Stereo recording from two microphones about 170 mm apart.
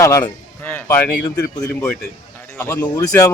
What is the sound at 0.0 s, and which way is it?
Speech, 15° left (ahead or behind).